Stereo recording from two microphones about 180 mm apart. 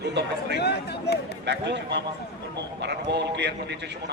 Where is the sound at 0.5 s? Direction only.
65° left (ahead or behind).